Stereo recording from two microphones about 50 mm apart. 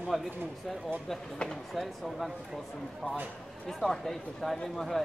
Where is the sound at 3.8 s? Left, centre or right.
Centre.